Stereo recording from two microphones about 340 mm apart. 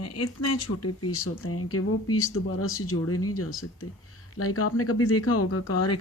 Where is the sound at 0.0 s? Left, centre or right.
Left.